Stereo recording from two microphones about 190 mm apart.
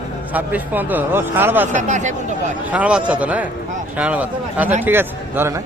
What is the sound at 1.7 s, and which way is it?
Speech, 40° right (ahead or behind).